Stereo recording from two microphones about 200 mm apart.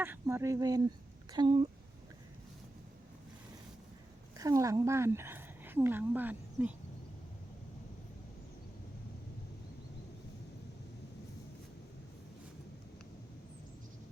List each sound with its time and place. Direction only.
0.0 s speech: 10° right (ahead or behind)
4.4 s a woman's voice: 15° right (ahead or behind)